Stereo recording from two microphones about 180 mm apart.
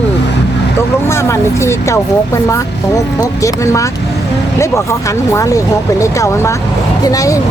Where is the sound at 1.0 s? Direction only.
15° left (ahead or behind).